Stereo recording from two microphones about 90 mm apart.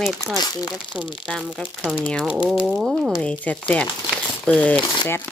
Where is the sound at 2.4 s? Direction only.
10° right (ahead or behind).